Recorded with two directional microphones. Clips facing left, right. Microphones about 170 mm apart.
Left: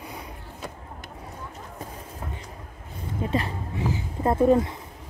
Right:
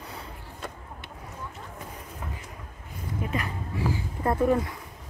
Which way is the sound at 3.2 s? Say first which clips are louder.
Left 5 dB; 30° left (ahead or behind).